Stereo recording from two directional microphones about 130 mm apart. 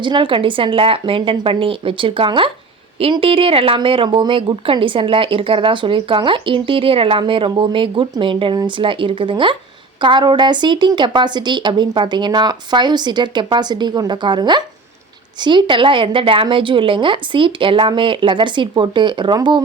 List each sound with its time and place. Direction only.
0.0 s a woman's voice: 40° right (ahead or behind)